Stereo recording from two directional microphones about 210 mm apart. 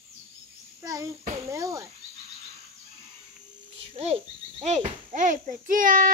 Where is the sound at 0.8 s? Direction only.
15° right (ahead or behind).